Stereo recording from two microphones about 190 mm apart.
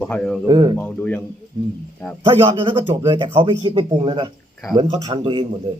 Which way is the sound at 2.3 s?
25° right (ahead or behind).